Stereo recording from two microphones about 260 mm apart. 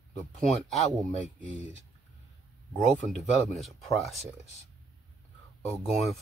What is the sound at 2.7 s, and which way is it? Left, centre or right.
Speech, centre.